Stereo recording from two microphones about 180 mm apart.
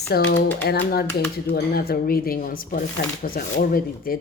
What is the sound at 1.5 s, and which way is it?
Speech, 60° left (ahead or behind).